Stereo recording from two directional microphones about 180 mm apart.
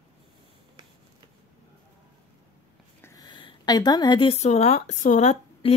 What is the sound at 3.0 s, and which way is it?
A woman's voice, 15° left (ahead or behind).